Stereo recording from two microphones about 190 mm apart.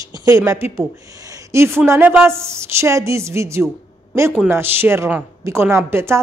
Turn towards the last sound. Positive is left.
turn(degrees=-15)  # may be behind; listen again after turning